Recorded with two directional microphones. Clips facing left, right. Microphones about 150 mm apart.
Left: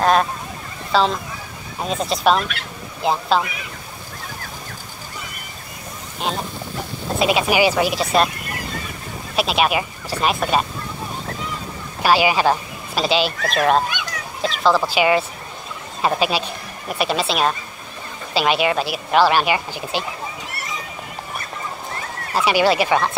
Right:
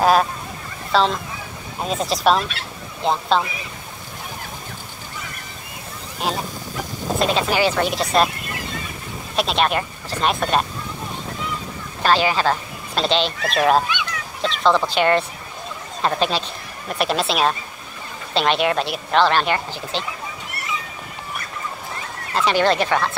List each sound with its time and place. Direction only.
0.0 s speech: 5° right (ahead or behind)
6.2 s speech: centre (ahead or behind)
7.2 s speech: 10° left (ahead or behind)
9.3 s speech: 5° left (ahead or behind)
12.0 s speech: 10° left (ahead or behind)
13.8 s a sound: 45° left (ahead or behind)
14.6 s speech: 5° left (ahead or behind)
22.3 s speech: 10° left (ahead or behind)